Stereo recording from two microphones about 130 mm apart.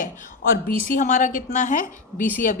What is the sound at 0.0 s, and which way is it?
A woman's voice, 75° left (ahead or behind).